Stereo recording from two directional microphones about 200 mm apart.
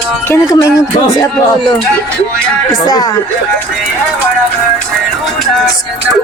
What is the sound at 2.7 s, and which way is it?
Speech, 20° left (ahead or behind).